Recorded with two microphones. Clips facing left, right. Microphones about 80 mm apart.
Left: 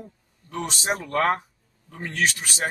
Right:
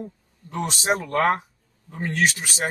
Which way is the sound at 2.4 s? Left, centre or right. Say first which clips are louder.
Right 1 dB; right.